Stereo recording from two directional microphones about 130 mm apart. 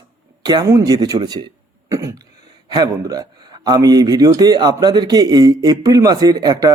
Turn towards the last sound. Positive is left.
turn(degrees=-30)  # may be behind; listen again after turning